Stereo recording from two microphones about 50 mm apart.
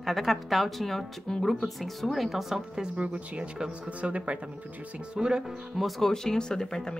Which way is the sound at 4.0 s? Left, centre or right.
Right.